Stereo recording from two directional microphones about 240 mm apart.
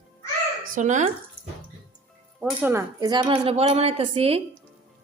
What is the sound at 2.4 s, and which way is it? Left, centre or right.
A woman's voice, centre.